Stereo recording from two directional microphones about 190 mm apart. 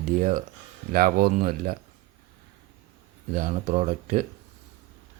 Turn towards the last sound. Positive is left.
turn(degrees=-40)  # may be behind; listen again after turning